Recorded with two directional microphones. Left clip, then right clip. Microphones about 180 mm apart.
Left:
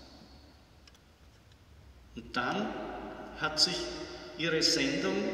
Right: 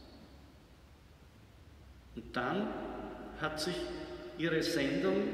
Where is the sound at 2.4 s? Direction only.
35° right (ahead or behind).